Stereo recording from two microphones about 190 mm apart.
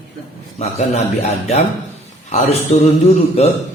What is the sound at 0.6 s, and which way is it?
A man's voice, 35° left (ahead or behind).